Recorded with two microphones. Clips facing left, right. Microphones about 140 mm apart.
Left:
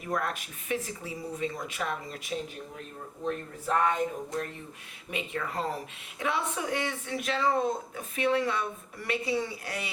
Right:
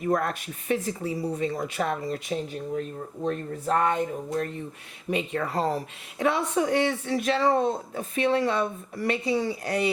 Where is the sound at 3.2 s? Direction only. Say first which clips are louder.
Right 4 dB; 35° right (ahead or behind).